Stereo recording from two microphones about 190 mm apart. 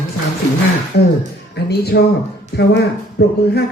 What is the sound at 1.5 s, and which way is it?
A man's voice, 60° left (ahead or behind).